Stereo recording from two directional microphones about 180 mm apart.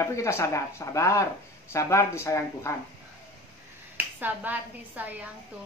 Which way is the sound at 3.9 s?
10° right (ahead or behind).